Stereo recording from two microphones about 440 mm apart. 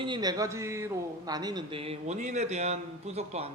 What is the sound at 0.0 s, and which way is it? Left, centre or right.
Speech, centre.